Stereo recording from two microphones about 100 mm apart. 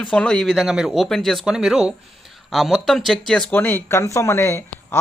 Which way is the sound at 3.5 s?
20° left (ahead or behind).